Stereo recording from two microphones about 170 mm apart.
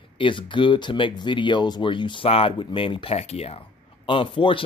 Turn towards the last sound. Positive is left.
turn(degrees=30)  # may be behind; listen again after turning